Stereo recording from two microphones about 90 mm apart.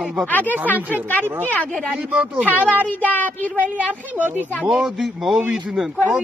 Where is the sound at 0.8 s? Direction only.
20° right (ahead or behind).